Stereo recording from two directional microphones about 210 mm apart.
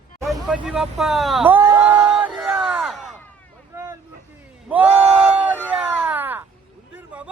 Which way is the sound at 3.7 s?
15° right (ahead or behind).